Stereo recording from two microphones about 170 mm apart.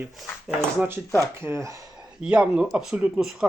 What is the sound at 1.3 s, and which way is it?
Speech, 15° right (ahead or behind).